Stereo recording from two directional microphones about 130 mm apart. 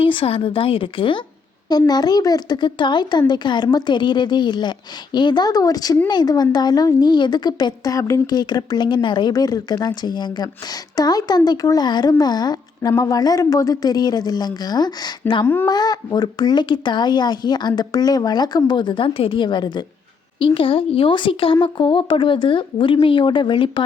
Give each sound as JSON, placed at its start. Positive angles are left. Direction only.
{"t": 0.0, "sound": "a woman's voice", "side_deg": 40}